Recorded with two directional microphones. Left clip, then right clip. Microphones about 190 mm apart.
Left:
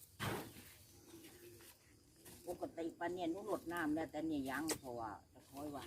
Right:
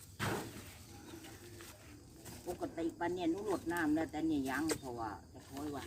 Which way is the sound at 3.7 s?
5° left (ahead or behind).